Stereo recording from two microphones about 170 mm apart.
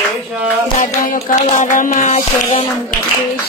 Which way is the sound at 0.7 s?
45° left (ahead or behind).